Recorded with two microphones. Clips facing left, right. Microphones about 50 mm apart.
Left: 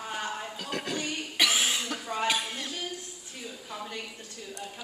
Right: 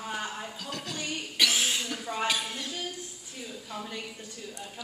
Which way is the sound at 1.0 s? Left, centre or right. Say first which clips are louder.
Right 1 dB; centre.